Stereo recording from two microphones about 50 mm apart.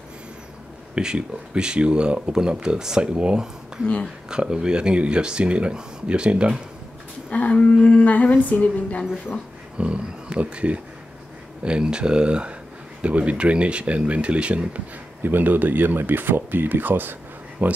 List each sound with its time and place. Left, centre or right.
0.9 s speech: centre
7.2 s livestock: left
9.8 s speech: right
15.2 s speech: right